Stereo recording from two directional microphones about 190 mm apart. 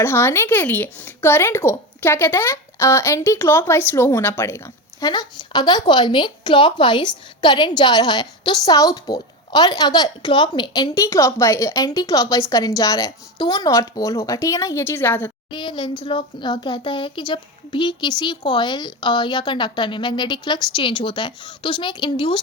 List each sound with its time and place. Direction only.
0.0 s speech: 10° left (ahead or behind)
15.5 s a child's voice: 25° left (ahead or behind)